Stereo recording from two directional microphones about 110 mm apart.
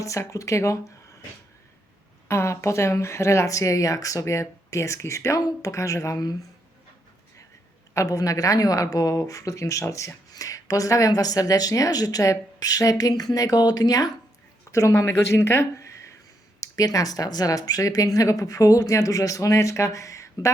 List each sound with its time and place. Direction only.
0.0 s speech: 30° left (ahead or behind)
2.2 s speech: 25° left (ahead or behind)
7.9 s speech: 30° left (ahead or behind)